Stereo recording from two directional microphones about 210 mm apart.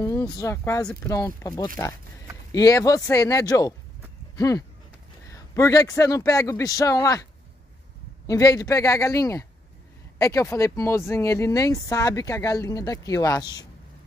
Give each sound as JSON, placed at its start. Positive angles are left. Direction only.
{"t": 0.0, "sound": "speech", "side_deg": 15}
{"t": 2.5, "sound": "speech", "side_deg": 15}
{"t": 8.3, "sound": "speech", "side_deg": 15}